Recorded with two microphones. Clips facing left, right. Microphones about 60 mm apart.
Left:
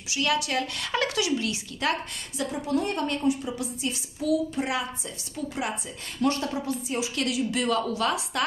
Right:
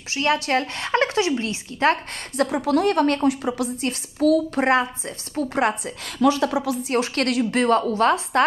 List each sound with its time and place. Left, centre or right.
0.1 s a woman's voice: right
2.3 s a woman's voice: right
6.5 s a woman's voice: right